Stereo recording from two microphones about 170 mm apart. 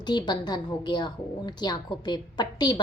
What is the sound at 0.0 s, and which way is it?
A woman's voice, 25° left (ahead or behind).